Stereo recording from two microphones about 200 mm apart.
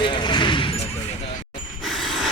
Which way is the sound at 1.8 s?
Centre (ahead or behind).